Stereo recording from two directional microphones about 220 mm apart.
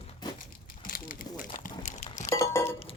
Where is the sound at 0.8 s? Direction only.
40° left (ahead or behind).